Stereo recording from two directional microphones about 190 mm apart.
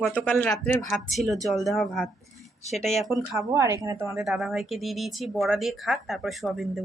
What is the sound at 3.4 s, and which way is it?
Speech, 15° right (ahead or behind).